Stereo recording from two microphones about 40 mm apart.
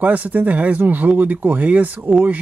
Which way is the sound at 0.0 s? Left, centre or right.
Right.